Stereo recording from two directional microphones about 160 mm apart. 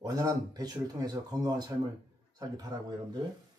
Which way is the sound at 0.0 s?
25° right (ahead or behind).